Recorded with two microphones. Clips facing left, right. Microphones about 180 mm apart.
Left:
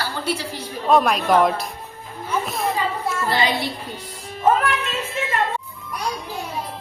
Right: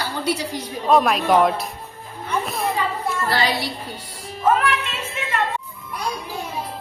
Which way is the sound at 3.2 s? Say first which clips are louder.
Left 1 dB; 20° left (ahead or behind).